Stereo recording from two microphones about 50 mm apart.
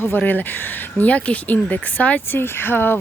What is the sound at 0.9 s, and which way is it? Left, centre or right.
Speech, left.